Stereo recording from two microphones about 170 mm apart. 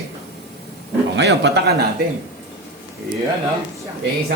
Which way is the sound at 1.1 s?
90° right.